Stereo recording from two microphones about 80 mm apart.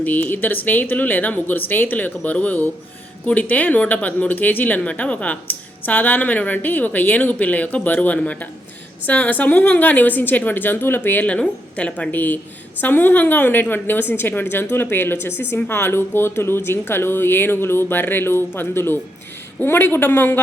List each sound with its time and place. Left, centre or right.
0.0 s speech: left